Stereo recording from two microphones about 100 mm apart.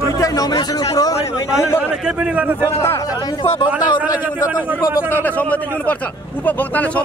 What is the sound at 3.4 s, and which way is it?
Speech, 70° left (ahead or behind).